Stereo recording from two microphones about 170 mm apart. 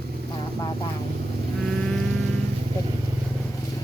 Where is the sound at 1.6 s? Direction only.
5° left (ahead or behind).